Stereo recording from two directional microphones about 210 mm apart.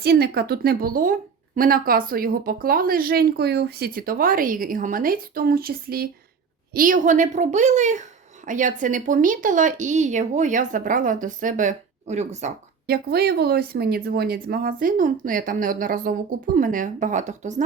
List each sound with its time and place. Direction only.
0.0 s a woman's voice: 50° right (ahead or behind); by 12.5 s 35° right (ahead or behind)
12.9 s a woman's voice: 50° right (ahead or behind)